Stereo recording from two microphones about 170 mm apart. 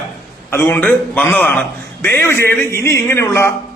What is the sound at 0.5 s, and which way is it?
A man's voice, 15° left (ahead or behind).